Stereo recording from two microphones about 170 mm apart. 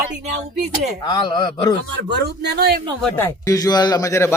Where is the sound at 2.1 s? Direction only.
75° right (ahead or behind).